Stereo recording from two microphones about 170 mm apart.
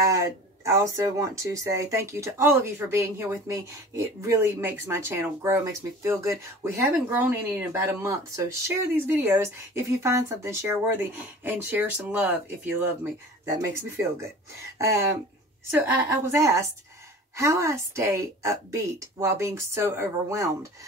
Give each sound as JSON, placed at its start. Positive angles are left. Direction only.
{"t": 0.1, "sound": "speech", "side_deg": -15}
{"t": 16.1, "sound": "speech", "side_deg": -15}